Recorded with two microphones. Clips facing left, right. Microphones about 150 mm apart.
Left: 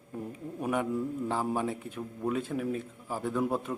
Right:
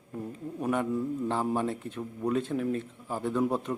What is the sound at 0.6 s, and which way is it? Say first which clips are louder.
A man's voice: right 1 dB; 10° left (ahead or behind).